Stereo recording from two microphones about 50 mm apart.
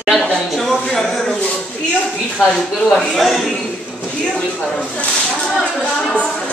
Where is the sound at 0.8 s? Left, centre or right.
Centre.